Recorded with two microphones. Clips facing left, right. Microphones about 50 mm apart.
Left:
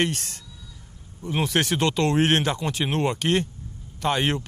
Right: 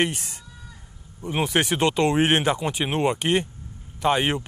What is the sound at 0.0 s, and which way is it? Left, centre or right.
Speech, centre.